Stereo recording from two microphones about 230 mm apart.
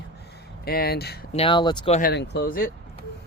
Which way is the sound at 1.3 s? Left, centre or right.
Left.